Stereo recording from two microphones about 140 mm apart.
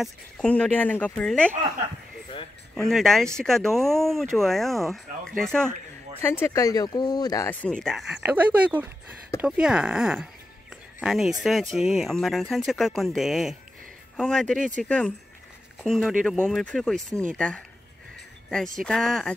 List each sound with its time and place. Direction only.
0.0 s speech: 5° left (ahead or behind)
2.7 s speech: centre (ahead or behind)
6.4 s speech: 25° left (ahead or behind)
7.8 s speech: centre (ahead or behind)
18.8 s speech: 5° left (ahead or behind)